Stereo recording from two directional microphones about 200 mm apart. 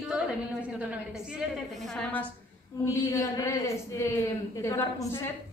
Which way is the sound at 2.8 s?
15° left (ahead or behind).